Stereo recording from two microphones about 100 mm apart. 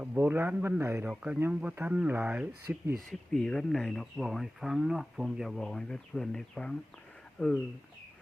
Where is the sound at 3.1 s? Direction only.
5° left (ahead or behind).